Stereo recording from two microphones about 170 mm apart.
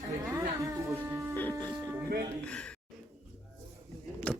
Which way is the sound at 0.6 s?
15° right (ahead or behind).